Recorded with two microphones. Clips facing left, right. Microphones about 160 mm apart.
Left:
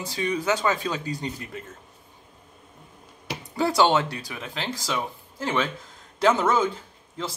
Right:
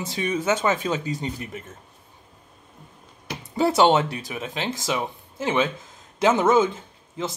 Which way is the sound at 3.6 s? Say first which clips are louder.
Right 3 dB; 25° right (ahead or behind).